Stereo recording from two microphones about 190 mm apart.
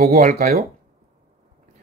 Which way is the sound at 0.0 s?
45° right (ahead or behind).